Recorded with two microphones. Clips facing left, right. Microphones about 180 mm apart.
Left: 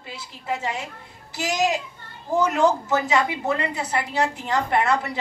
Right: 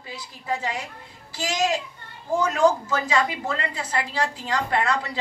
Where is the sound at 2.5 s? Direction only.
20° left (ahead or behind).